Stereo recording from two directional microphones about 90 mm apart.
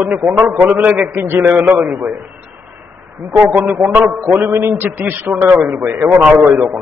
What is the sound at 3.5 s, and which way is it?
A man's voice, 20° right (ahead or behind).